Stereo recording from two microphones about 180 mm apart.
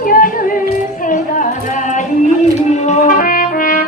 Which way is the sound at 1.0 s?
45° left (ahead or behind).